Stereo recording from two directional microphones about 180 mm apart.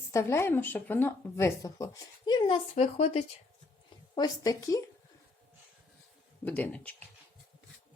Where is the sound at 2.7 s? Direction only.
40° left (ahead or behind).